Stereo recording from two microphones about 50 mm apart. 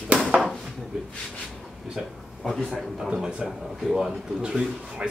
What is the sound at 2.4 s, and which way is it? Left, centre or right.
Speech, centre.